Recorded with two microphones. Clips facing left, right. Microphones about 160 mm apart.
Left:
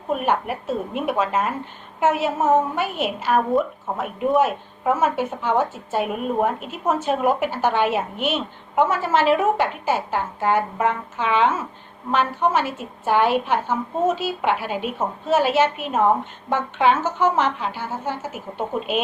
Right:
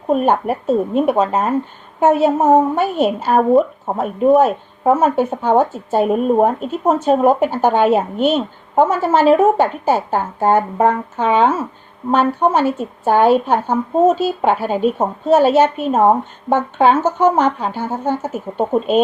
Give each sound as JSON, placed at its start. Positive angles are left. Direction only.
{"t": 0.1, "sound": "a woman's voice", "side_deg": -35}